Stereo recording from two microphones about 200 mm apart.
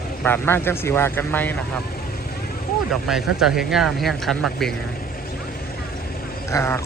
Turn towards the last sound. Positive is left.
turn(degrees=15)  # may be behind; listen again after turning